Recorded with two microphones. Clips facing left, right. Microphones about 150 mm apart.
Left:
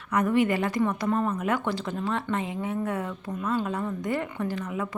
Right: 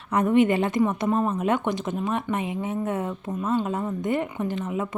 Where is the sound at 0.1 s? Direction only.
25° right (ahead or behind).